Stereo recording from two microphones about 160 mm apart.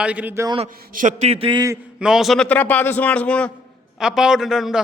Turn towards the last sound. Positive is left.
turn(degrees=-5)  # may be behind; listen again after turning